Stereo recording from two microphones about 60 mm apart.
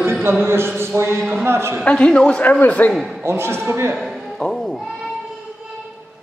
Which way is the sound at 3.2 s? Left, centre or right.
Right.